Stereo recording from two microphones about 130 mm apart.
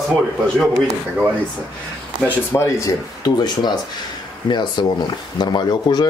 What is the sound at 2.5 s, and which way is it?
Speech, 25° left (ahead or behind).